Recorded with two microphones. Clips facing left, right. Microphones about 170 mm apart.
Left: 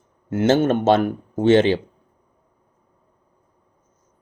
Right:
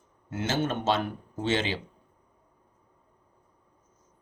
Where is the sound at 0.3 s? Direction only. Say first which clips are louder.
Left 12 dB; 60° left (ahead or behind).